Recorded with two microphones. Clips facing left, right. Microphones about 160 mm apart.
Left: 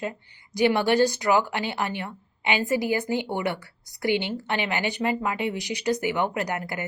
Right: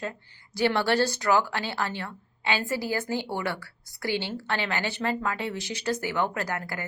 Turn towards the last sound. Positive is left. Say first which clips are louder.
# left 3 dB
turn(degrees=20)  # may be behind; listen again after turning